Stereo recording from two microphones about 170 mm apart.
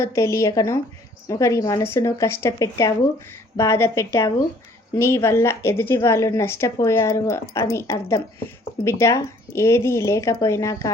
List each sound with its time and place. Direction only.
0.0 s speech: 15° left (ahead or behind)